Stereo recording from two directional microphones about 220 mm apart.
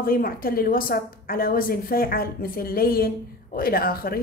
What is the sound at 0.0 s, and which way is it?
A woman's voice, 40° left (ahead or behind).